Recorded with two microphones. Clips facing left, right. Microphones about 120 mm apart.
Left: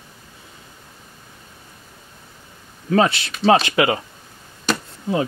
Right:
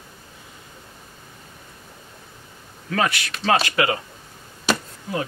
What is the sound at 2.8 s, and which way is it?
Speech, 25° left (ahead or behind).